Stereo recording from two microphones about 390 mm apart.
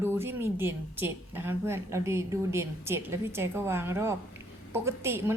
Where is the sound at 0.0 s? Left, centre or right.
Centre.